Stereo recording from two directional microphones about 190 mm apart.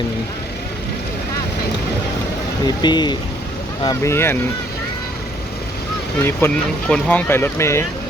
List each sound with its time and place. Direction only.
2.6 s speech: 20° left (ahead or behind)
6.2 s speech: 10° left (ahead or behind)